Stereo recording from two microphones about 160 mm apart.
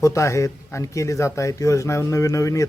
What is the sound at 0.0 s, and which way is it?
Speech, 20° left (ahead or behind).